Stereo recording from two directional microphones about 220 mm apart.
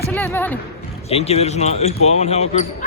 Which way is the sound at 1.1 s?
30° left (ahead or behind).